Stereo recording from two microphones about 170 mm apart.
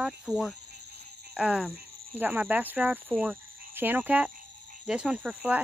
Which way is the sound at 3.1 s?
Centre (ahead or behind).